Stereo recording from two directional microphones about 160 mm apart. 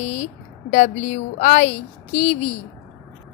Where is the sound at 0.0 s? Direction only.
45° left (ahead or behind).